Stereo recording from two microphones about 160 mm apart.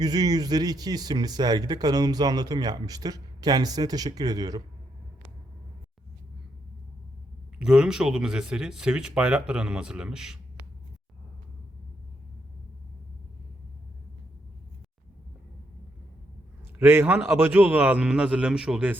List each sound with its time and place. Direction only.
0.0 s speech: 25° right (ahead or behind)
7.6 s speech: 5° right (ahead or behind)
16.7 s a man's voice: 15° right (ahead or behind)